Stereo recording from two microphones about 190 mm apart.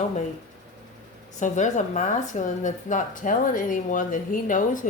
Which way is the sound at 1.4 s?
40° left (ahead or behind).